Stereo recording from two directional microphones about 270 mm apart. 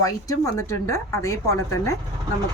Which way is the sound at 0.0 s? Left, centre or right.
Centre.